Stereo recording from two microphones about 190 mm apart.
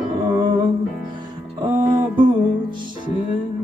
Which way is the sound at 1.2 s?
25° right (ahead or behind).